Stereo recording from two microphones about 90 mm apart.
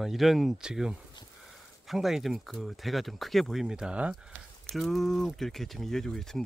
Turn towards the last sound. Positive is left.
turn(degrees=5)  # may be behind; listen again after turning